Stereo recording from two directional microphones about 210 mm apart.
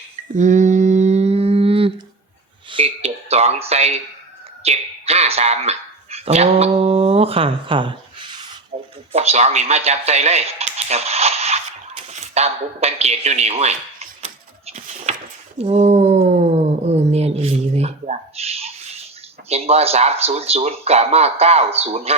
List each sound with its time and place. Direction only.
0.3 s mantra: 35° right (ahead or behind)
2.6 s speech: 25° right (ahead or behind)
8.7 s a sound: 35° right (ahead or behind)
9.1 s speech: 30° right (ahead or behind)
15.5 s cat: 30° right (ahead or behind)
19.5 s speech: 30° right (ahead or behind)